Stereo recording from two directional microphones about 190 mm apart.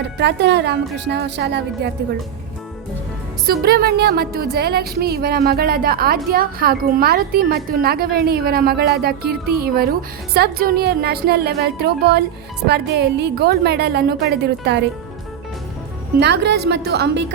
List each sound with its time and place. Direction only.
0.2 s speech: 60° right (ahead or behind)
3.4 s speech: 55° right (ahead or behind)
16.2 s speech: 65° right (ahead or behind)